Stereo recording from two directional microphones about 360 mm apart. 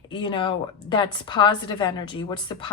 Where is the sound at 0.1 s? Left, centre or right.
Centre.